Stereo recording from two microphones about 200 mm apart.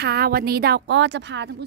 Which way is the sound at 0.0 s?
50° right (ahead or behind).